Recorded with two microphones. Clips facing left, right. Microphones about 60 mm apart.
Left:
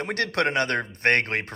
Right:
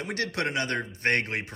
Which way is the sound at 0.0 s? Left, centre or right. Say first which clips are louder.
Left 5 dB; left.